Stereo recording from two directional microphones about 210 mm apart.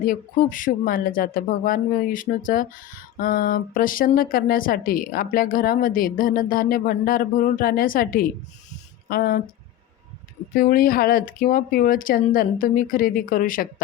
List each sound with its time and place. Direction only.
0.0 s speech: 40° left (ahead or behind)
10.5 s speech: 40° left (ahead or behind)